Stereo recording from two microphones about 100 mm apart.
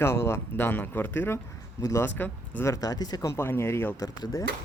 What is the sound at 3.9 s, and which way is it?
Speech, 40° left (ahead or behind).